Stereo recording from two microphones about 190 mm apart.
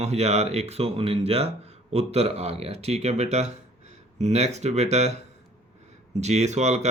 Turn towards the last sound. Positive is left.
turn(degrees=-35)  # may be behind; listen again after turning